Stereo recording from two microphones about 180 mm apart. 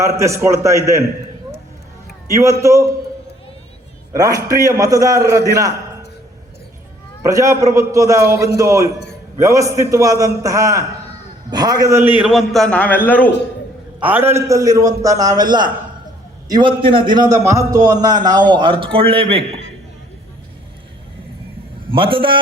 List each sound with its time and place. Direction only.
0.0 s a man's voice: 15° right (ahead or behind)
2.3 s a man's voice: 15° right (ahead or behind)
4.1 s a man's voice: 20° right (ahead or behind)
7.2 s a man's voice: 15° right (ahead or behind); by 13.3 s 10° left (ahead or behind)
14.0 s a man's voice: 10° right (ahead or behind); by 19.5 s 30° right (ahead or behind)
21.8 s a man's voice: 30° right (ahead or behind)